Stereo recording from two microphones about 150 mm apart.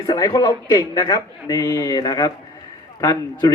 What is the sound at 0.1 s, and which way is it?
Speech, 25° left (ahead or behind).